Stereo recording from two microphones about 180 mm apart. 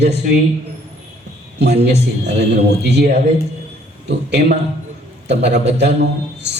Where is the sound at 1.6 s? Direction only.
70° right (ahead or behind).